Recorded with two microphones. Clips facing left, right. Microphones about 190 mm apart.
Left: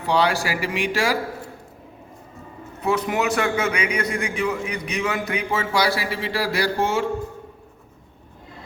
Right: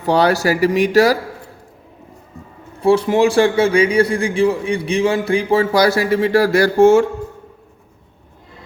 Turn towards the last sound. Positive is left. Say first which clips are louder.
# right 11 dB
turn(degrees=-45)  # may be behind; listen again after turning